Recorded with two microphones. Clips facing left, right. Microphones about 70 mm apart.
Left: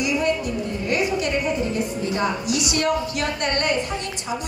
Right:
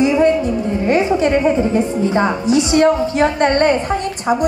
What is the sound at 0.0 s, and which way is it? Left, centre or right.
A woman's voice, right.